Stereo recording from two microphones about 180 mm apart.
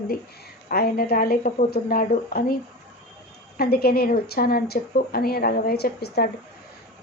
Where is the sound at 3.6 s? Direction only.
60° left (ahead or behind).